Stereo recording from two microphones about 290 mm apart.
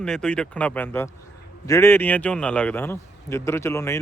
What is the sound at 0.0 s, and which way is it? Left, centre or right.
A man's voice, centre.